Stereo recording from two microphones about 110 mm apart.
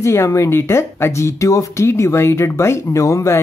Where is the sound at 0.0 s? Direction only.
25° left (ahead or behind).